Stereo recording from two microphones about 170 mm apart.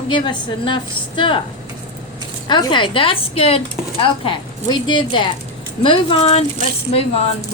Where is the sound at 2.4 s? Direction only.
30° left (ahead or behind).